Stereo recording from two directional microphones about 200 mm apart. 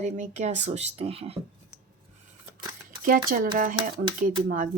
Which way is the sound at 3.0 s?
45° right (ahead or behind).